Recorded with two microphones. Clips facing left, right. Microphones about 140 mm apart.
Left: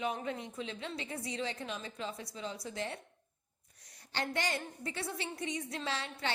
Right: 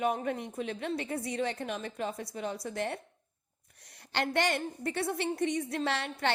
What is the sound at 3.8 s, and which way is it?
A woman's voice, 65° right (ahead or behind).